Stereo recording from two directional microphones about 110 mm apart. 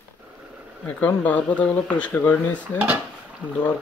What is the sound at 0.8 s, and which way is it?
Speech, 15° left (ahead or behind).